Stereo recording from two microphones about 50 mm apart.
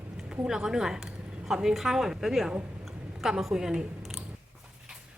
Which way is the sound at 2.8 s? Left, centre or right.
Centre.